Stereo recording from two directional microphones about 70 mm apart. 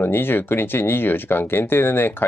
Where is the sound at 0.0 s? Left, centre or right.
Left.